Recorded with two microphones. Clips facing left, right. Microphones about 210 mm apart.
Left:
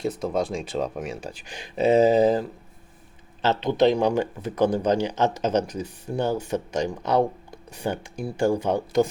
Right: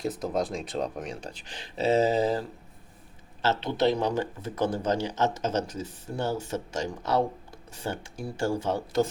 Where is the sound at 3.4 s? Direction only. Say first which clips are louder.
Left 5 dB; 15° left (ahead or behind).